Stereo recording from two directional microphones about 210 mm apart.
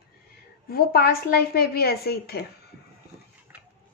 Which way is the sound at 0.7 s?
45° left (ahead or behind).